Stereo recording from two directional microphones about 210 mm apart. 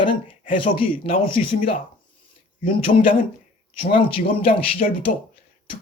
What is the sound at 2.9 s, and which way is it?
Speech, 40° left (ahead or behind).